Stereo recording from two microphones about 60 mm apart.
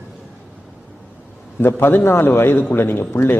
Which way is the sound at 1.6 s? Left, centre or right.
Left.